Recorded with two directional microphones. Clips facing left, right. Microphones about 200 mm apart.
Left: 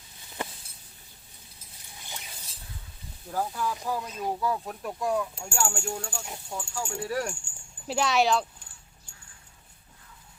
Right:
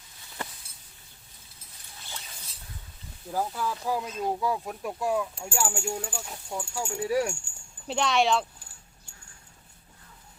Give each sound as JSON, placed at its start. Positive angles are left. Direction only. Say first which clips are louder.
{"t": 2.0, "sound": "a sound", "louder": "left 1 dB", "side_deg": 15}
{"t": 3.2, "sound": "speech", "louder": "even", "side_deg": -5}
{"t": 7.9, "sound": "speech", "louder": "even", "side_deg": 5}